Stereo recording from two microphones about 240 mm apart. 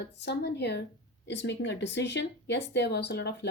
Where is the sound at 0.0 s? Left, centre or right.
Left.